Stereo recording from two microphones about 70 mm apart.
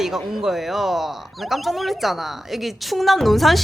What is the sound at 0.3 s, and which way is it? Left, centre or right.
A woman's voice, centre.